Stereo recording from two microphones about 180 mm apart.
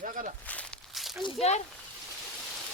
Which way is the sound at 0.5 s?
Centre (ahead or behind).